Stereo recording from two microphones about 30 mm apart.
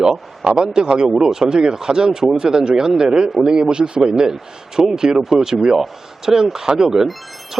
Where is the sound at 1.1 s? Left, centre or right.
Centre.